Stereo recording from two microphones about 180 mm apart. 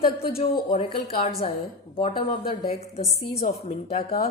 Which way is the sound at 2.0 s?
30° left (ahead or behind).